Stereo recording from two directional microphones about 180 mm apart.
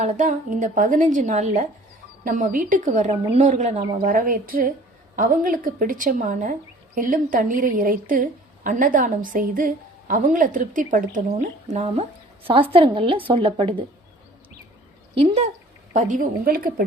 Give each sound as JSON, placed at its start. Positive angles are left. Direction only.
{"t": 0.0, "sound": "a woman's voice", "side_deg": -45}
{"t": 15.2, "sound": "a woman's voice", "side_deg": -35}